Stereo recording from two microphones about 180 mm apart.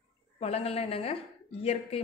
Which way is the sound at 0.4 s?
35° left (ahead or behind).